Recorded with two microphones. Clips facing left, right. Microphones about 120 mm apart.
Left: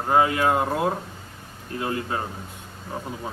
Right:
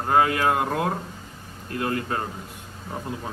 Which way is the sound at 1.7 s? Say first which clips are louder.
Right 1 dB; 20° left (ahead or behind).